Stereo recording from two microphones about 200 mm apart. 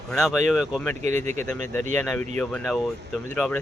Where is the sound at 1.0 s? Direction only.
35° right (ahead or behind).